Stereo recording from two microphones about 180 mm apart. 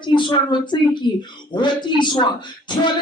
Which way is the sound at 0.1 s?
25° left (ahead or behind).